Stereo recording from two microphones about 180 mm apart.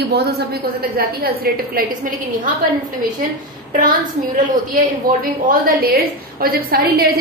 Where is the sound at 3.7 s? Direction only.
45° right (ahead or behind).